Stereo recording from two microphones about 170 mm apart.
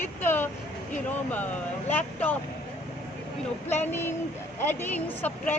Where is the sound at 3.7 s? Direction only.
15° left (ahead or behind).